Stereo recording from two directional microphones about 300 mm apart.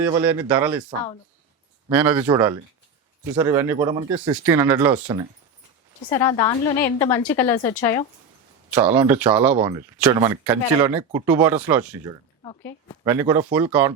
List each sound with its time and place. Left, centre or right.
0.1 s speech: centre
1.9 s speech: centre
6.1 s a woman's voice: centre
8.7 s speech: centre
12.4 s speech: centre
13.1 s speech: centre